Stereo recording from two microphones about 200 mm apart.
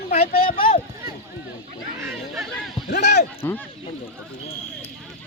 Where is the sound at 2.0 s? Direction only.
5° right (ahead or behind).